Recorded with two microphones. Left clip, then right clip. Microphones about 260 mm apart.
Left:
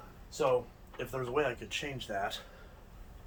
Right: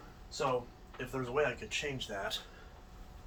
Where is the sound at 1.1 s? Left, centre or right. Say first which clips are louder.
Left 1 dB; left.